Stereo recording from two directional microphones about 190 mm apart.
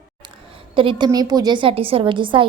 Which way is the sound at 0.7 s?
25° right (ahead or behind).